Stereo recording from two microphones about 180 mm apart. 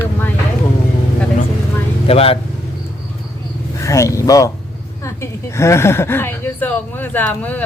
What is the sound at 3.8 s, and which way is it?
A woman's voice, 15° left (ahead or behind).